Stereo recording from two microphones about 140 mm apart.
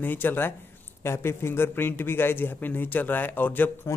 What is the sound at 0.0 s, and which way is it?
A man's voice, 15° left (ahead or behind).